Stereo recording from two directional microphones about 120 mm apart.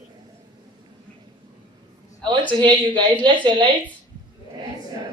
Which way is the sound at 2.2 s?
40° right (ahead or behind).